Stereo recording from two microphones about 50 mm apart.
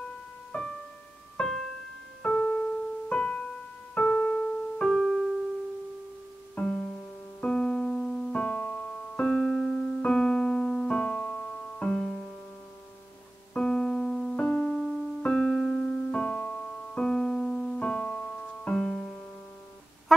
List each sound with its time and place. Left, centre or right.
0.5 s music: left
2.2 s piano: left
4.7 s piano: centre
6.5 s music: left
7.4 s keyboard: centre
8.3 s piano: left
11.0 s piano: left
11.9 s music: centre
13.6 s keyboard: centre
14.3 s keyboard: left
14.8 s keyboard: centre
17.0 s piano: centre
17.7 s music: left